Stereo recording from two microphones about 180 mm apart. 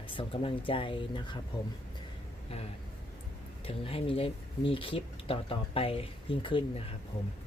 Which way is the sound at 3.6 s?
30° left (ahead or behind).